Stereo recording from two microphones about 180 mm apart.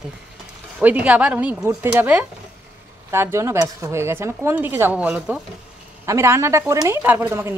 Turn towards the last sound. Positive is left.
turn(degrees=-15)  # may be behind; listen again after turning